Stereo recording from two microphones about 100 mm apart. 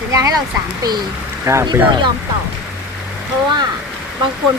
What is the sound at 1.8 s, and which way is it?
Speech, 50° right (ahead or behind).